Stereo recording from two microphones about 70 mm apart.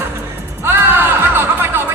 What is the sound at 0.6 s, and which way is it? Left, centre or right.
Music, right.